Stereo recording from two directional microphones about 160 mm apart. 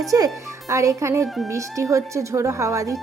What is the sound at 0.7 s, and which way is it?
A woman's voice, 20° right (ahead or behind).